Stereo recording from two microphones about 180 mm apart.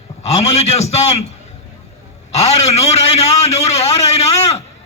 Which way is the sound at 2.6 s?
35° left (ahead or behind).